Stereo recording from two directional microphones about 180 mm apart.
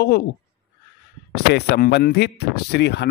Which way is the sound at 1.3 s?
65° left (ahead or behind).